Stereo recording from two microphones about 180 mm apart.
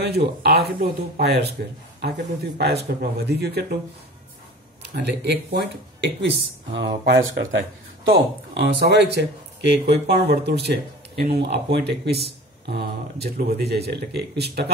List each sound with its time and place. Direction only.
0.0 s speech: 65° right (ahead or behind)
4.9 s speech: 70° right (ahead or behind)